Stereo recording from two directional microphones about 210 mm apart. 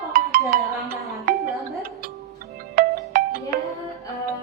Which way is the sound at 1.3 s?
40° right (ahead or behind).